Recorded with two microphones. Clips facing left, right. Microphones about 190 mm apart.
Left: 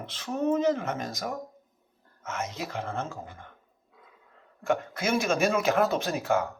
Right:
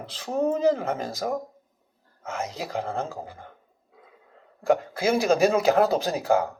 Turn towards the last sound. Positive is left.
turn(degrees=-35)  # may be behind; listen again after turning